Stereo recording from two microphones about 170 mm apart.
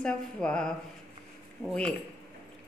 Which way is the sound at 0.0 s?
5° left (ahead or behind).